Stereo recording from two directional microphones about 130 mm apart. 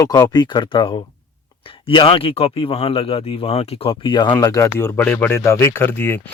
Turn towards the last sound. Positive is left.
turn(degrees=15)  # may be behind; listen again after turning